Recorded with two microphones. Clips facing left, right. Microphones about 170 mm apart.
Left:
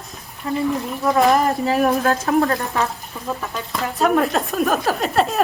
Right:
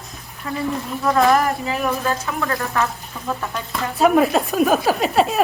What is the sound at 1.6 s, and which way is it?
Speech, 40° left (ahead or behind).